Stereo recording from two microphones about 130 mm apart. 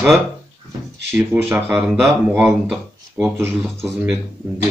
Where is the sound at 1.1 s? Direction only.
15° right (ahead or behind).